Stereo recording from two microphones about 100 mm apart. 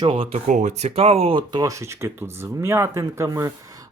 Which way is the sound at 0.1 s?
75° right (ahead or behind).